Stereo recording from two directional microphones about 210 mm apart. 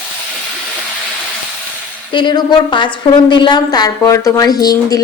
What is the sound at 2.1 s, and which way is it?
A woman's voice, 20° left (ahead or behind).